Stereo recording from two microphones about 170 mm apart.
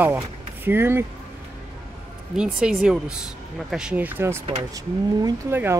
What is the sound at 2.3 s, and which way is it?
Speech, 5° right (ahead or behind).